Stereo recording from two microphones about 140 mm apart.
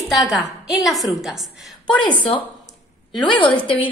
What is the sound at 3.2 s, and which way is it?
Speech, 35° left (ahead or behind).